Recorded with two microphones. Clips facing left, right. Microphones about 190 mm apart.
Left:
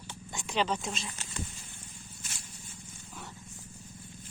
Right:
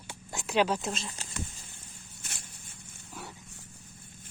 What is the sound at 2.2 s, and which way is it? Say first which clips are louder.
Vehicle: right 2 dB; 60° right (ahead or behind).